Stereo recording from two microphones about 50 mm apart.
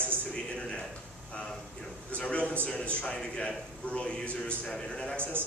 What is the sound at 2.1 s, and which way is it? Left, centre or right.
A man's voice, left.